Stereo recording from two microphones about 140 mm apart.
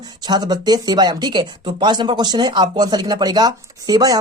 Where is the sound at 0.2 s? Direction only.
30° right (ahead or behind).